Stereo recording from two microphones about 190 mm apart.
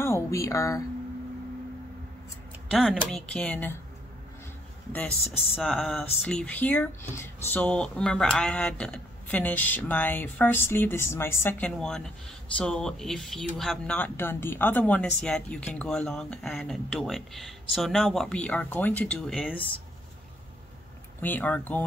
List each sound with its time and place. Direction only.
0.0 s speech: 15° left (ahead or behind)
2.7 s speech: 5° right (ahead or behind)
5.6 s speech: centre (ahead or behind)
21.2 s speech: 10° left (ahead or behind)